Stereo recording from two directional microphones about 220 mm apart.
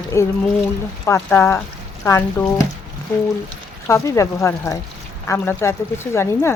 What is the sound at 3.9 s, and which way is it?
Speech, 15° left (ahead or behind).